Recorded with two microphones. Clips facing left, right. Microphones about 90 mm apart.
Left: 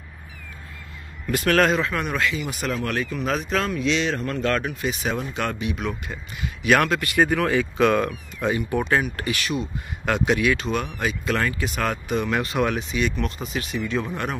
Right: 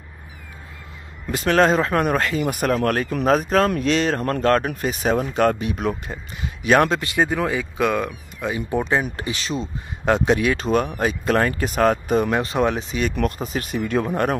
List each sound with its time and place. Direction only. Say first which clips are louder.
1.2 s speech: right 2 dB; 20° right (ahead or behind)
1.7 s speech: right 5 dB; 40° right (ahead or behind); by 8.5 s 5° right (ahead or behind)
8.5 s speech: right 3 dB; 15° right (ahead or behind); by 14.3 s 45° right (ahead or behind)